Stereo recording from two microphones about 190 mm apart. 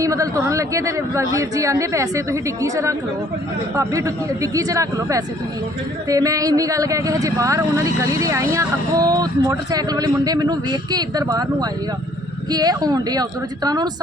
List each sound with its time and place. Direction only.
0.0 s speech: 15° right (ahead or behind)